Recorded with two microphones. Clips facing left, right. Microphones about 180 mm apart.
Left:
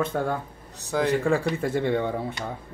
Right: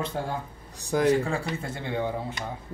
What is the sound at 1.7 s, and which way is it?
Speech, 60° left (ahead or behind).